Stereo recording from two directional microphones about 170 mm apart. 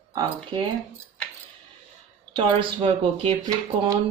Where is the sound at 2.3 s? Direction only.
30° right (ahead or behind).